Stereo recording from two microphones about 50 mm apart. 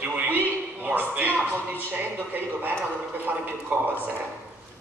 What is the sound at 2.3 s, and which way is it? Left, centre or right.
A man's voice, right.